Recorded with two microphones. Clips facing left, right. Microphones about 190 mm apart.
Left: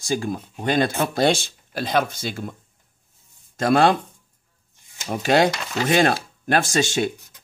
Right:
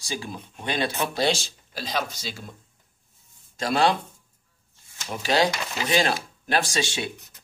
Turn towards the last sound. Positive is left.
turn(degrees=45)  # may be behind; listen again after turning